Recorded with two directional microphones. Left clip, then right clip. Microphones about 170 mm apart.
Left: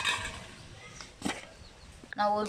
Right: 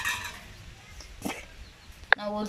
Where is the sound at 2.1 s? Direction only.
15° right (ahead or behind).